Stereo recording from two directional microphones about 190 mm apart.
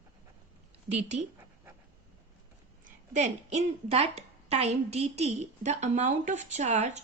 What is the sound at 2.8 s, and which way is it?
A woman's voice, 35° right (ahead or behind).